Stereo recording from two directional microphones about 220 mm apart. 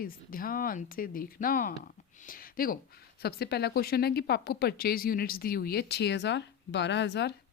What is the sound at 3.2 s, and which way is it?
Speech, 45° left (ahead or behind).